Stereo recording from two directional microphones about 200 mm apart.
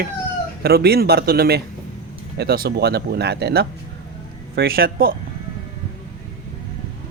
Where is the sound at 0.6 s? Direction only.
50° right (ahead or behind).